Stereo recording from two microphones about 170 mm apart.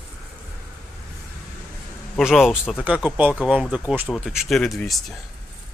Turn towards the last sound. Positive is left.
turn(degrees=0)  # may be behind; listen again after turning